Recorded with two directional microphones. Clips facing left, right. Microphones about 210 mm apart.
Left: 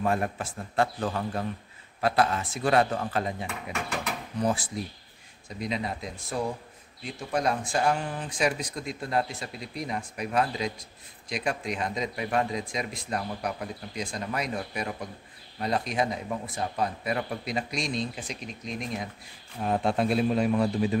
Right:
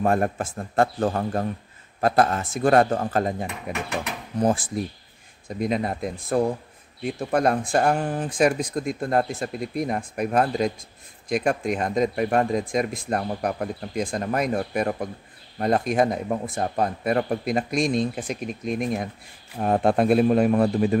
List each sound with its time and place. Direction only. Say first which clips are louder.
0.0 s speech: right 5 dB; 50° right (ahead or behind)